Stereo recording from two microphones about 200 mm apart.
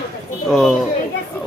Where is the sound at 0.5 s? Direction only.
Centre (ahead or behind).